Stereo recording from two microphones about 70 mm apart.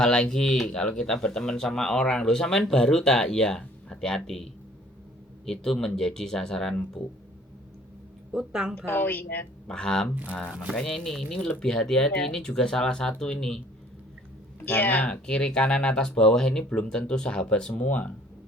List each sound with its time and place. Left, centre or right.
0.0 s speech: centre
5.5 s speech: centre
8.3 s speech: centre
8.7 s a woman's voice: left
9.6 s speech: centre
14.6 s speech: left